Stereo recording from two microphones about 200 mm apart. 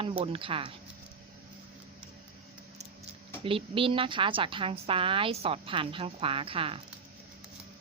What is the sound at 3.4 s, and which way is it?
A woman's voice, 25° right (ahead or behind).